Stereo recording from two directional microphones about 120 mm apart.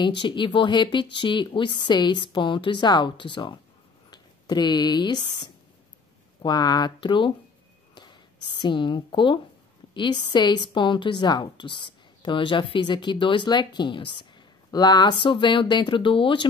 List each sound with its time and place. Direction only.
0.0 s speech: 40° left (ahead or behind)
7.9 s whispering: 40° left (ahead or behind)
8.5 s speech: 40° left (ahead or behind)